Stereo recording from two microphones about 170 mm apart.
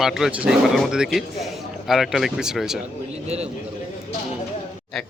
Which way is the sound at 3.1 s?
40° right (ahead or behind).